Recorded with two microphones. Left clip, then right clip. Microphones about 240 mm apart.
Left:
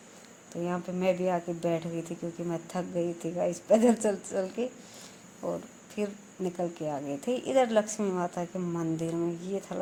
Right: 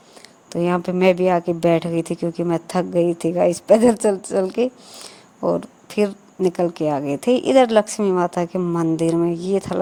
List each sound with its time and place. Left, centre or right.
0.5 s speech: right